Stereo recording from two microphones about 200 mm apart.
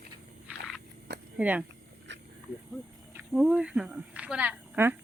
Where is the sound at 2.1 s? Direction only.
65° right (ahead or behind).